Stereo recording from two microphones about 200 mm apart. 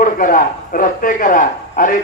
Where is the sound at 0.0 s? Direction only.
40° left (ahead or behind).